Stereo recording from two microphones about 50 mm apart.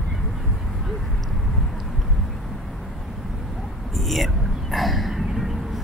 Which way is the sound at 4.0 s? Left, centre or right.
Centre.